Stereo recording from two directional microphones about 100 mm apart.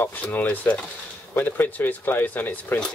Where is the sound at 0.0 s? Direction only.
20° left (ahead or behind).